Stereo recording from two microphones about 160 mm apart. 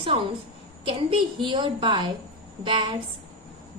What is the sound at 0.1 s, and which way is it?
A woman's voice, 35° right (ahead or behind).